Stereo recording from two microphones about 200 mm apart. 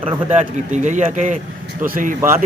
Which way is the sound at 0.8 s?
40° right (ahead or behind).